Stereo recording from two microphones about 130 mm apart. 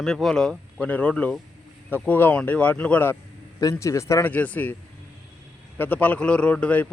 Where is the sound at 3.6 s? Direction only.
25° left (ahead or behind).